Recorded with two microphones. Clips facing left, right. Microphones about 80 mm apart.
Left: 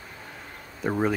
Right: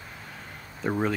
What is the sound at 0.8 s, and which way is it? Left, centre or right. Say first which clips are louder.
Speech: left 2 dB; centre.